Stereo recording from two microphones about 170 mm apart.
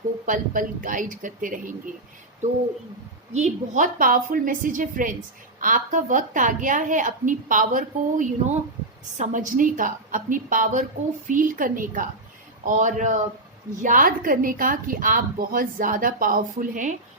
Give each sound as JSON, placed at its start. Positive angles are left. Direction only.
{"t": 0.3, "sound": "a woman's voice", "side_deg": -50}
{"t": 3.3, "sound": "a woman's voice", "side_deg": -45}